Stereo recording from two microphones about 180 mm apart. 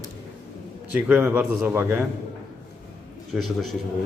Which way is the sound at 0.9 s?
5° right (ahead or behind).